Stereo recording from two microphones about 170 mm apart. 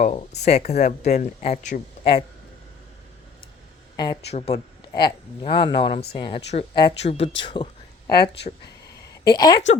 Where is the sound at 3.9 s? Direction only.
25° left (ahead or behind).